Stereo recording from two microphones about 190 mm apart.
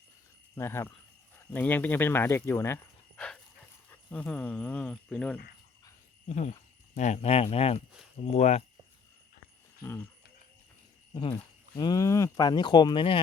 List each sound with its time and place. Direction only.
0.5 s speech: 15° left (ahead or behind)
6.2 s speech: 35° left (ahead or behind)
11.1 s speech: 25° left (ahead or behind)